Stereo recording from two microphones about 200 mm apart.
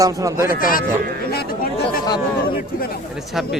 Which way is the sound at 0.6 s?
45° left (ahead or behind).